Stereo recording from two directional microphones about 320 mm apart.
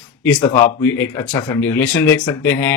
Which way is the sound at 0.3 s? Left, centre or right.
Centre.